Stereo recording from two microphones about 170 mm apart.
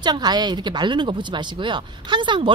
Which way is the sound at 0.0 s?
25° right (ahead or behind).